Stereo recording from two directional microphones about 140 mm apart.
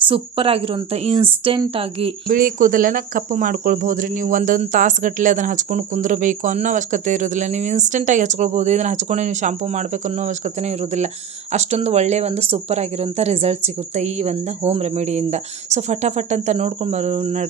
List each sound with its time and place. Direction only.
0.1 s a woman's voice: 40° right (ahead or behind)
2.2 s speech: 80° right; by 17.4 s 50° right (ahead or behind)